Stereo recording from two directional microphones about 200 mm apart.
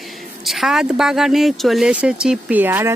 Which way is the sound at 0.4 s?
Centre (ahead or behind).